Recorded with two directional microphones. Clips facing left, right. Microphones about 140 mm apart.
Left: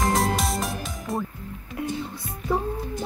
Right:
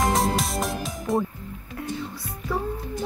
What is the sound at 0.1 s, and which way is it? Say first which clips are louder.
Music: even; centre (ahead or behind).